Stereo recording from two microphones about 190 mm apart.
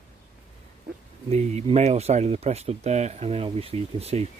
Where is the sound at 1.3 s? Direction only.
35° right (ahead or behind).